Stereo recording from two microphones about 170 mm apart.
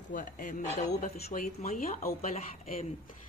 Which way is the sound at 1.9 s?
55° left (ahead or behind).